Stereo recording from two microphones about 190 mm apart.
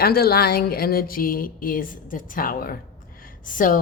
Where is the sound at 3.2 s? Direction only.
45° left (ahead or behind).